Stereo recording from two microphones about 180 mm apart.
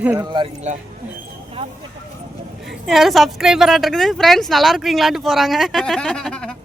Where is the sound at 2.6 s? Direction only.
Centre (ahead or behind).